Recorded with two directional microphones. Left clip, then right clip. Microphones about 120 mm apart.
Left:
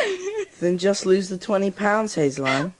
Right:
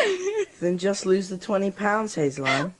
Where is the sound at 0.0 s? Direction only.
25° left (ahead or behind).